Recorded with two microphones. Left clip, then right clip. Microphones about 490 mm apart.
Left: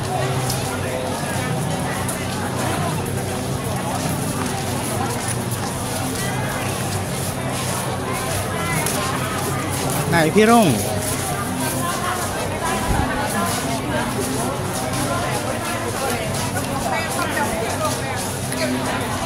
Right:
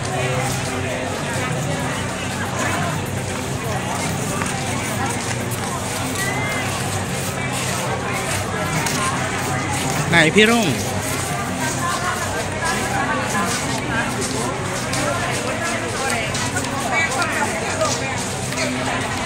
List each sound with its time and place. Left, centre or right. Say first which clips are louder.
10.1 s vehicle: right 1 dB; left